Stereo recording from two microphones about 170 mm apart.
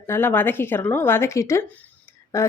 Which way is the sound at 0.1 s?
10° left (ahead or behind).